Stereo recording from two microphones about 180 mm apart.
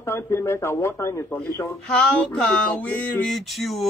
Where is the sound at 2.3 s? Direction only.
5° left (ahead or behind).